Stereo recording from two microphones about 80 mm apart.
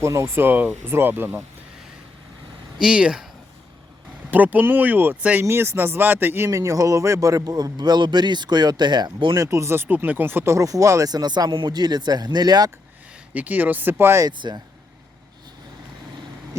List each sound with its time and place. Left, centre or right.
0.0 s speech: right
2.8 s speech: centre
4.3 s speech: right
5.5 s speech: right
9.3 s speech: right
10.5 s speech: right
11.5 s speech: right
13.3 s speech: right
14.4 s speech: right